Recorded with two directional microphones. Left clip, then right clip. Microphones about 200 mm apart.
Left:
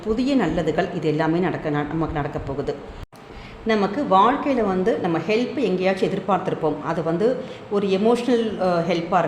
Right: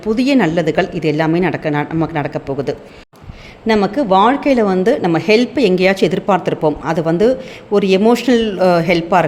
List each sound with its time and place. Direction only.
0.0 s a woman's voice: 25° right (ahead or behind)